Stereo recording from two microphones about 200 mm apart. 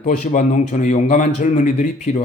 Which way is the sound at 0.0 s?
40° left (ahead or behind).